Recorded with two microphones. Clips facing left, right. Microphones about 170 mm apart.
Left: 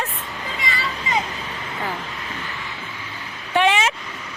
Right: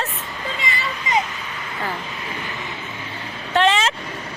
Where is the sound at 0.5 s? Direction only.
25° right (ahead or behind).